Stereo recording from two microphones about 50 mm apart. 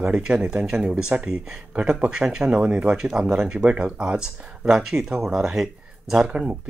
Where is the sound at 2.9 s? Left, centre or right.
Centre.